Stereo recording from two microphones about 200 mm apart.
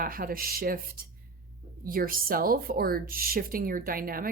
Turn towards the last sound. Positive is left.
turn(degrees=-45)  # may be behind; listen again after turning